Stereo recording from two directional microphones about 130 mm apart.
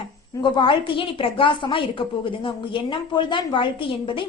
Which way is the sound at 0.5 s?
40° left (ahead or behind).